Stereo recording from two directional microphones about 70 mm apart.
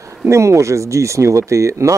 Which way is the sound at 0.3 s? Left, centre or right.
Right.